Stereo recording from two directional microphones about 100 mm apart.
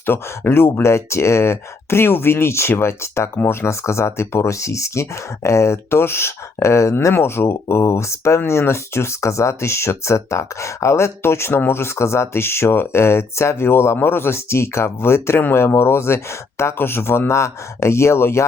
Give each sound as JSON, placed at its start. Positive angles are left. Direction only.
{"t": 0.0, "sound": "speech", "side_deg": 20}